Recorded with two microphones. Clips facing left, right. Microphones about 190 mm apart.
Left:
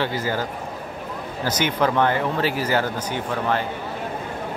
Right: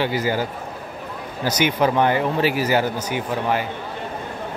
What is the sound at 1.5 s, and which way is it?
Speech, 10° right (ahead or behind).